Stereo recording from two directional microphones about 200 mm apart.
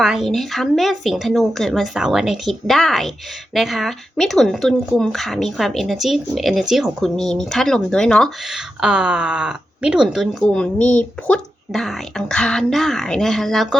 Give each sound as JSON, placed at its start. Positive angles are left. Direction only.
{"t": 0.0, "sound": "speech", "side_deg": 0}